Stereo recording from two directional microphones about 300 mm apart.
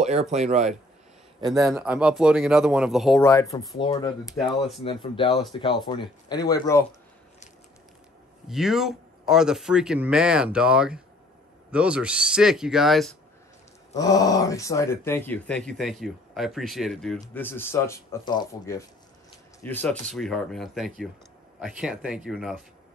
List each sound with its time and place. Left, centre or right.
0.0 s speech: right
1.5 s speech: centre
8.5 s speech: centre
13.9 s speech: centre